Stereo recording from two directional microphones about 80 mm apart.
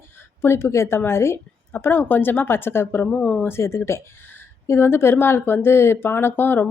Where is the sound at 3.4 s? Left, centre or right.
Left.